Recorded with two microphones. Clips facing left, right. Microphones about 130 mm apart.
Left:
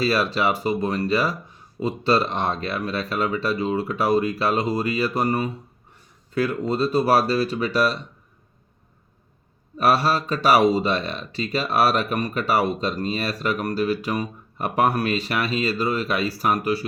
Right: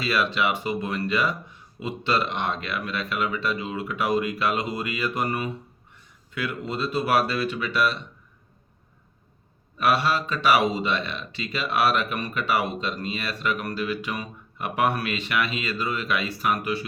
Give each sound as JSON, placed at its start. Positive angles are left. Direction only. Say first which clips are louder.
{"t": 0.0, "sound": "speech", "louder": "left 3 dB", "side_deg": 35}
{"t": 9.7, "sound": "speech", "louder": "left 3 dB", "side_deg": 40}